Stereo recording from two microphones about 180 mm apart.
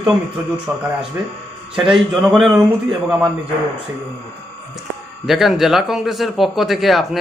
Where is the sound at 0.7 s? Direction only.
10° right (ahead or behind).